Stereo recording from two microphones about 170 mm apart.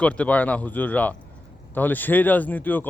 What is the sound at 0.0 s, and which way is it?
Speech, 10° left (ahead or behind).